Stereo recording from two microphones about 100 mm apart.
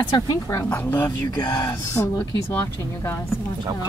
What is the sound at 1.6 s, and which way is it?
Speech, 30° left (ahead or behind).